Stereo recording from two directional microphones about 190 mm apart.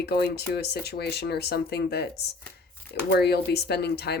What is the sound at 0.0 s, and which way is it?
Speech, 60° left (ahead or behind).